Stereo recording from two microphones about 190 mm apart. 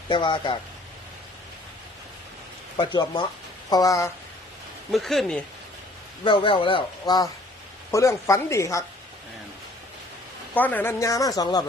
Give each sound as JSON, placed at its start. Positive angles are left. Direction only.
{"t": 0.1, "sound": "a man's voice", "side_deg": 25}
{"t": 2.7, "sound": "a man's voice", "side_deg": 25}
{"t": 4.9, "sound": "speech", "side_deg": 0}
{"t": 6.2, "sound": "a man's voice", "side_deg": 25}
{"t": 10.5, "sound": "speech", "side_deg": 10}